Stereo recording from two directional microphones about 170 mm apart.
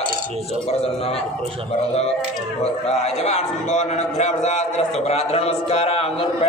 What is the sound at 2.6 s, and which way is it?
Speech, 40° left (ahead or behind).